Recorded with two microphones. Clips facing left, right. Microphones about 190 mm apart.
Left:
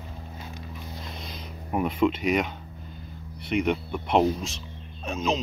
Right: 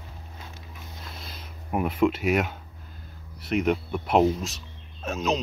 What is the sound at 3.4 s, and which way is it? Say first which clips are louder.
Speech: right 1 dB; centre (ahead or behind).